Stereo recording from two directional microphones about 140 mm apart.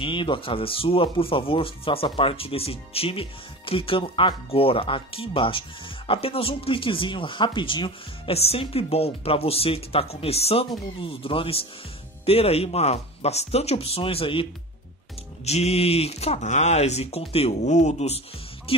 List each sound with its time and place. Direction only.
0.0 s speech: 35° left (ahead or behind)
15.4 s speech: 50° left (ahead or behind)